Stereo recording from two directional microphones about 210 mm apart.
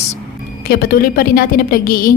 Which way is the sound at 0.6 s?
45° left (ahead or behind).